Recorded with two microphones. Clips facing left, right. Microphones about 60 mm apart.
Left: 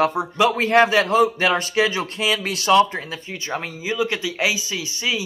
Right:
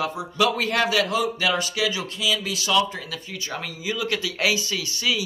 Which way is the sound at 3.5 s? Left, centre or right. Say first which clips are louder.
Left 4 dB; left.